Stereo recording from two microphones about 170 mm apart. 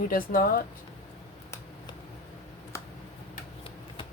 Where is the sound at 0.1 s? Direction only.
55° left (ahead or behind).